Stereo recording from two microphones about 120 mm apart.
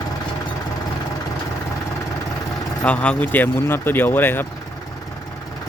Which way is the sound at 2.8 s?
10° left (ahead or behind).